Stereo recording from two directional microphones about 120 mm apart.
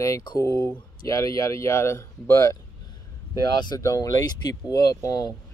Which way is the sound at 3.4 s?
35° left (ahead or behind).